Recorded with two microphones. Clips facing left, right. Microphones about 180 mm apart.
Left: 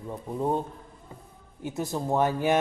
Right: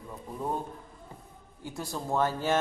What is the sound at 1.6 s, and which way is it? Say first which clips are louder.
Speech: left 6 dB; 20° left (ahead or behind).